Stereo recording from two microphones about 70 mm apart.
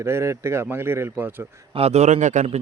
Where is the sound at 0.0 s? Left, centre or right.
Right.